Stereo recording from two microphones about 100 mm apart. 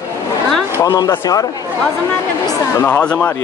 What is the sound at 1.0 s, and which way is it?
Speech, 40° left (ahead or behind).